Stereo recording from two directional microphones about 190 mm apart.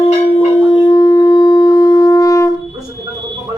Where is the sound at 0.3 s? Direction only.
30° left (ahead or behind).